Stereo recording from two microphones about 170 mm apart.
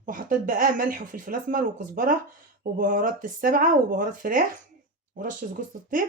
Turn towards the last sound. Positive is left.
turn(degrees=-50)  # may be behind; listen again after turning